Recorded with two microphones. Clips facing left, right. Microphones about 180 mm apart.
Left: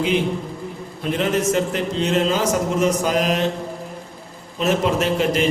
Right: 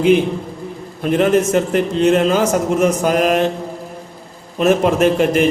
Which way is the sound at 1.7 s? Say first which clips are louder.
Right 7 dB; 55° right (ahead or behind).